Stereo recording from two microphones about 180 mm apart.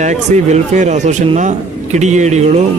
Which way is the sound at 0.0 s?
40° right (ahead or behind).